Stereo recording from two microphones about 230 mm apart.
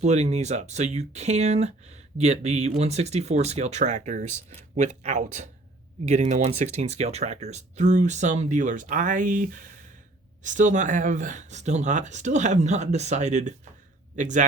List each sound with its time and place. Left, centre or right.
0.0 s speech: right